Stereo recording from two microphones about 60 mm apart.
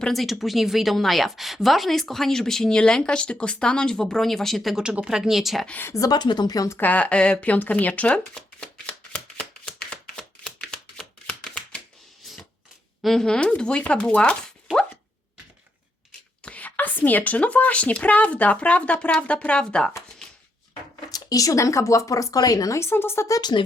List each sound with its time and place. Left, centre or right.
0.1 s speech: centre
4.8 s speech: centre
5.9 s speech: left
6.7 s a sound: left; by 11.0 s centre
11.3 s chopping: left
12.2 s a sound: centre
13.0 s speech: centre
16.4 s speech: left
21.1 s speech: left
22.8 s speech: left